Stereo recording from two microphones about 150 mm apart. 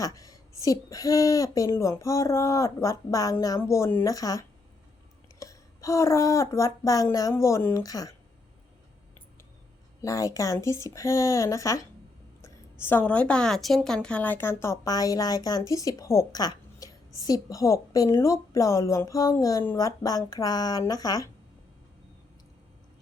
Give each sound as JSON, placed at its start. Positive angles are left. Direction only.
{"t": 0.0, "sound": "a woman's voice", "side_deg": 25}
{"t": 10.0, "sound": "a woman's voice", "side_deg": 20}